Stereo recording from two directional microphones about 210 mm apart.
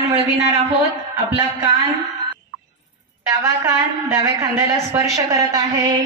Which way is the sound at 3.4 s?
15° right (ahead or behind).